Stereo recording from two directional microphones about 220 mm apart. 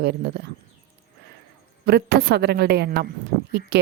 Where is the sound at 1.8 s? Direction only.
45° right (ahead or behind).